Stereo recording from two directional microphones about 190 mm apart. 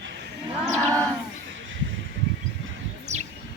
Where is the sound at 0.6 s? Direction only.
15° right (ahead or behind).